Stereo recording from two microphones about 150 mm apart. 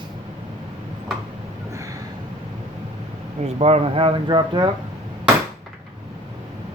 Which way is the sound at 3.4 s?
45° right (ahead or behind).